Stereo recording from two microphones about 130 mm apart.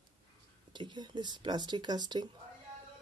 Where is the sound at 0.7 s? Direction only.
35° right (ahead or behind).